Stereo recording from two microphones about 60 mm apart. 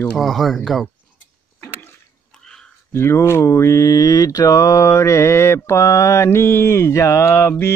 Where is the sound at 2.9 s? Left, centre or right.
Left.